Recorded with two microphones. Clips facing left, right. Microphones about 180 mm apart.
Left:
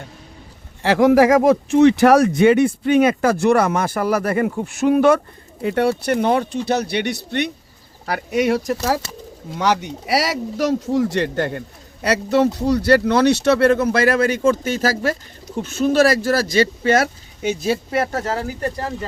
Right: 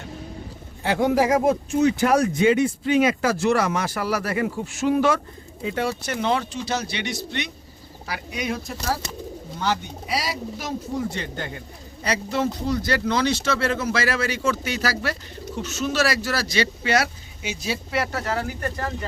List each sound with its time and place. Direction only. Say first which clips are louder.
0.8 s speech: left 7 dB; 90° left; by 18.9 s 35° left (ahead or behind)